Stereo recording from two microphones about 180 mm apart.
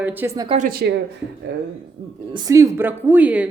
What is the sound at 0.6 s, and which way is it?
Speech, 55° right (ahead or behind).